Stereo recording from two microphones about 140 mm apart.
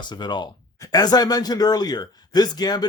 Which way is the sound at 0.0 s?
30° left (ahead or behind).